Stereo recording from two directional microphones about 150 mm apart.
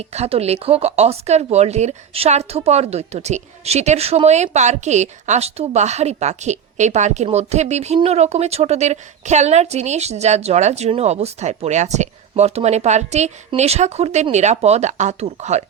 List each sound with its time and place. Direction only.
0.0 s speech: 45° right (ahead or behind)